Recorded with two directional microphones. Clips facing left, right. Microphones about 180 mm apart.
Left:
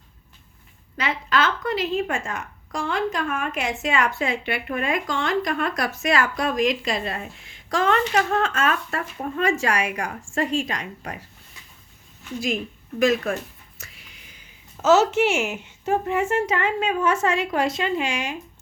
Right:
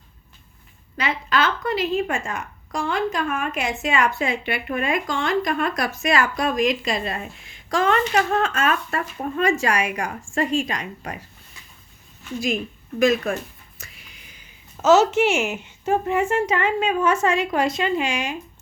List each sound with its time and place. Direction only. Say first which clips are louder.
0.9 s a woman's voice: right 1 dB; 10° right (ahead or behind)
13.0 s a woman's voice: right 1 dB; 15° right (ahead or behind)